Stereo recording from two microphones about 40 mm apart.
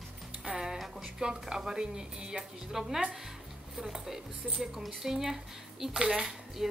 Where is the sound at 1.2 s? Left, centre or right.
Centre.